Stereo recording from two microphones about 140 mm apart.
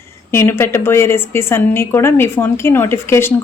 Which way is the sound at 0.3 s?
15° left (ahead or behind).